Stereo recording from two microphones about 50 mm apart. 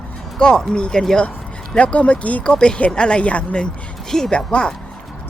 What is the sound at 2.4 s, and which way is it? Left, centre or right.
Speech, centre.